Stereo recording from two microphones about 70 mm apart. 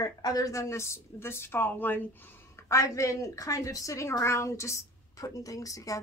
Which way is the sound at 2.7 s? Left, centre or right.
Left.